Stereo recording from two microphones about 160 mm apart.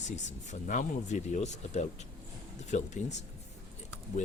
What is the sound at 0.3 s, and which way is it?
Speech, 50° left (ahead or behind).